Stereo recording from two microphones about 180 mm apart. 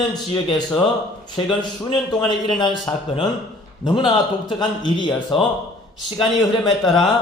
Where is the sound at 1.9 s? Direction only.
25° left (ahead or behind).